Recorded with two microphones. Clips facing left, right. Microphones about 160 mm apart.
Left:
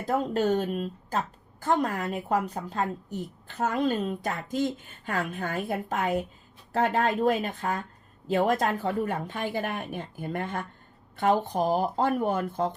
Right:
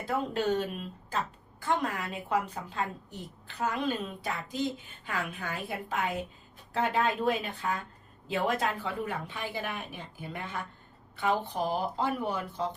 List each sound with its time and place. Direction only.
0.0 s a woman's voice: 40° left (ahead or behind)